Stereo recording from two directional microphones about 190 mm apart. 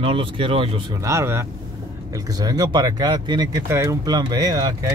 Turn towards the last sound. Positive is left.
turn(degrees=-20)  # may be behind; listen again after turning